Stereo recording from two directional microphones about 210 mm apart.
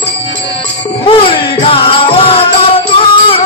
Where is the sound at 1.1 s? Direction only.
25° left (ahead or behind).